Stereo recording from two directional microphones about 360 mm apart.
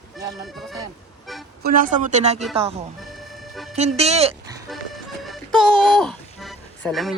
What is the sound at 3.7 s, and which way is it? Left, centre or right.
Speech, centre.